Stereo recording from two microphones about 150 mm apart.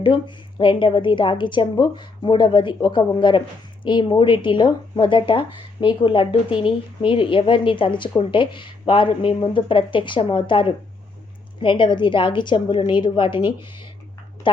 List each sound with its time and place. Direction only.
0.0 s speech: 35° left (ahead or behind)